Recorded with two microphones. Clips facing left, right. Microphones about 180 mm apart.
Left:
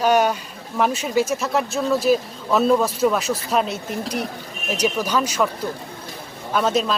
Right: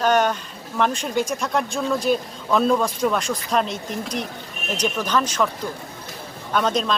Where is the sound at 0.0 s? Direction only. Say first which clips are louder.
Left 1 dB; 10° left (ahead or behind).